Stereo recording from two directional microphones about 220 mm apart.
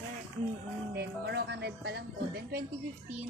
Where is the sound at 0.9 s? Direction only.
50° right (ahead or behind).